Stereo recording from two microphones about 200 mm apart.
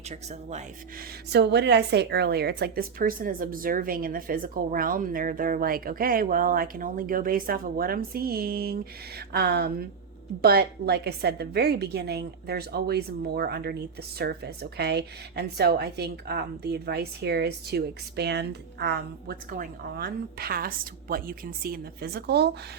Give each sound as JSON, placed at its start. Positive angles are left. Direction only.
{"t": 0.1, "sound": "speech", "side_deg": -35}
{"t": 1.3, "sound": "a woman's voice", "side_deg": -55}